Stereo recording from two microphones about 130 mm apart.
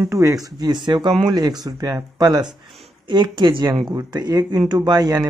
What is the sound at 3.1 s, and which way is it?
Speech, 35° right (ahead or behind).